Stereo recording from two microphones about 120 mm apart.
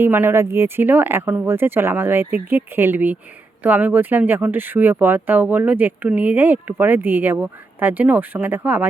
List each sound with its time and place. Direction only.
0.0 s speech: 20° right (ahead or behind)